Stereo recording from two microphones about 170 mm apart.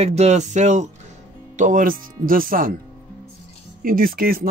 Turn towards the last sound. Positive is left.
turn(degrees=-60)  # may be behind; listen again after turning